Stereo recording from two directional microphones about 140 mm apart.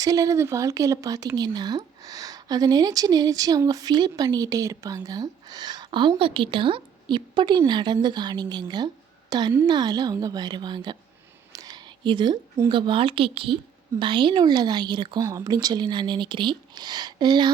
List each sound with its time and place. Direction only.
0.0 s a woman's voice: 25° right (ahead or behind)
11.5 s a sound: 25° right (ahead or behind)
12.6 s speech: 35° right (ahead or behind)